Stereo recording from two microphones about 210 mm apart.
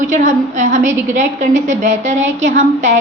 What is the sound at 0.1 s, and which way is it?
A woman's voice, 35° right (ahead or behind).